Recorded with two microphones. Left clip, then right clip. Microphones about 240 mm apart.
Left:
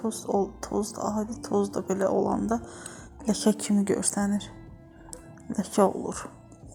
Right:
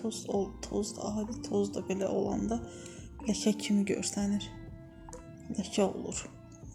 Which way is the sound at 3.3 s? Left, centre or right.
Centre.